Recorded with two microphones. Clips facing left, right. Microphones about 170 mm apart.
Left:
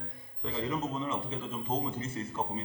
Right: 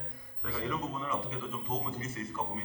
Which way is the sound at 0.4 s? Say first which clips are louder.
Left 2 dB; 20° left (ahead or behind).